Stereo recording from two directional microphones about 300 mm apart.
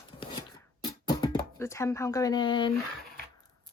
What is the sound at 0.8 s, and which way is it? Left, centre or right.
Music, centre.